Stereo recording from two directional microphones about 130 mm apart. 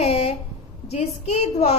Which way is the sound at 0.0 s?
55° left (ahead or behind).